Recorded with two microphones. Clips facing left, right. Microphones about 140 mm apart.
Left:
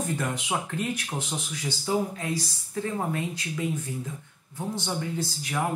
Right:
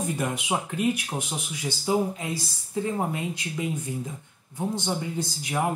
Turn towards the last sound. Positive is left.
turn(degrees=-20)  # may be behind; listen again after turning